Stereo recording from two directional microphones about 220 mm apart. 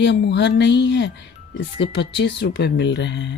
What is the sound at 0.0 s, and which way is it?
Speech, 50° left (ahead or behind).